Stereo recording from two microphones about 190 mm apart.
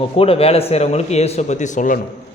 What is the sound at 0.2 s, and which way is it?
A man's voice, 30° left (ahead or behind).